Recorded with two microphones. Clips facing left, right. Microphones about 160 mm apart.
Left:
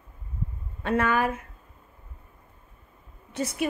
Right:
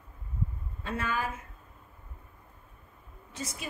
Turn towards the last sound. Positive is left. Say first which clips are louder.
# left 12 dB
turn(degrees=65)  # may be behind; listen again after turning